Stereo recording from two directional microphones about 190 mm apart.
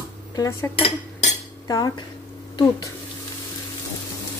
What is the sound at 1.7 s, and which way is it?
Speech, 20° left (ahead or behind).